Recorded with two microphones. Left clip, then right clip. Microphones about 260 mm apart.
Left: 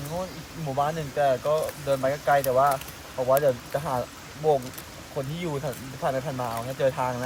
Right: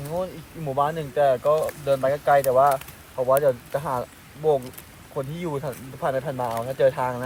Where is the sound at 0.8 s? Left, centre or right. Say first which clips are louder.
Right 3 dB; right.